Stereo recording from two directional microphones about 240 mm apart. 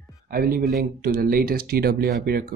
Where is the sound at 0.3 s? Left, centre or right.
Right.